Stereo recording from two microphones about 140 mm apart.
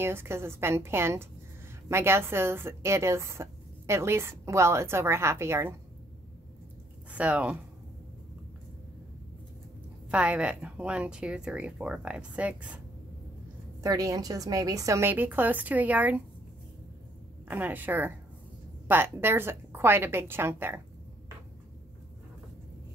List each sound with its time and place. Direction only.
0.0 s a woman's voice: 15° right (ahead or behind)
7.1 s speech: 10° right (ahead or behind)
10.0 s a woman's voice: 10° right (ahead or behind)
13.8 s a woman's voice: 25° right (ahead or behind)
17.5 s a woman's voice: 15° right (ahead or behind)